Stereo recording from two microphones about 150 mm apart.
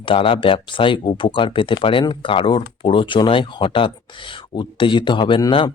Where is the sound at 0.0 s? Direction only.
35° left (ahead or behind).